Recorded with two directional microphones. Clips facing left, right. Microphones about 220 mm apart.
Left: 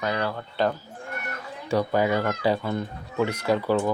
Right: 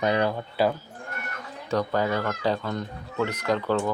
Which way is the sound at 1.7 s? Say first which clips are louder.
Left 2 dB; 10° left (ahead or behind).